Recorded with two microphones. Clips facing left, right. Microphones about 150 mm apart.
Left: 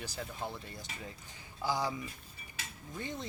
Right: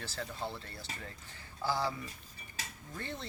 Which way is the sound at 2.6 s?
40° right (ahead or behind).